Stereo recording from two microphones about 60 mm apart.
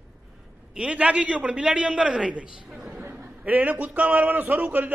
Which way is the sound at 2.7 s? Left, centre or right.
Centre.